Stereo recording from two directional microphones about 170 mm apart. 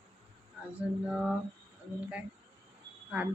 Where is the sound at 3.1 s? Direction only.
10° right (ahead or behind).